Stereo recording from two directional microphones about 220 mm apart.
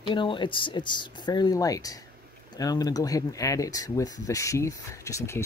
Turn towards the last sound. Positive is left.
turn(degrees=10)  # may be behind; listen again after turning